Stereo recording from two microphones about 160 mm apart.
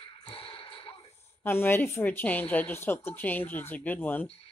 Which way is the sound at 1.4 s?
15° left (ahead or behind).